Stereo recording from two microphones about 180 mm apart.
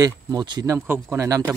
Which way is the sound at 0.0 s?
20° right (ahead or behind).